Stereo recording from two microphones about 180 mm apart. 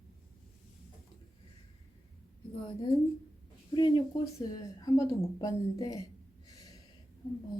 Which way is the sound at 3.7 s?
25° left (ahead or behind).